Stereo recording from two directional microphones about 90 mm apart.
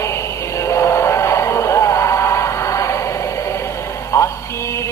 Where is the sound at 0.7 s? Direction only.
30° left (ahead or behind).